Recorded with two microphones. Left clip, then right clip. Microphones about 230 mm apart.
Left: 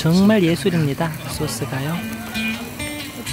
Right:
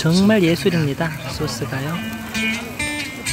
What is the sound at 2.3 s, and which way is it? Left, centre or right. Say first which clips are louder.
Music: right 3 dB; right.